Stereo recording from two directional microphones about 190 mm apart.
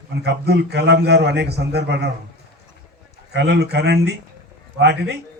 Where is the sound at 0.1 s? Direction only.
60° right (ahead or behind).